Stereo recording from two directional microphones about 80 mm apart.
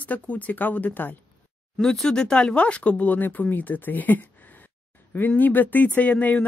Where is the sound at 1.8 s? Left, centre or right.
Centre.